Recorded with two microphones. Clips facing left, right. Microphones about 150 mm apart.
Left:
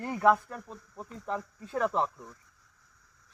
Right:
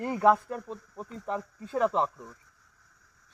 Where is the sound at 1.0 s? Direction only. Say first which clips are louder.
Right 1 dB; 5° right (ahead or behind).